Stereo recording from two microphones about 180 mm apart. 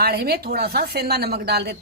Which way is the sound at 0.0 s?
60° right (ahead or behind).